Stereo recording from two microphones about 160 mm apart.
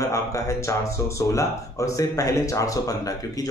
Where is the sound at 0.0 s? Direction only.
20° left (ahead or behind).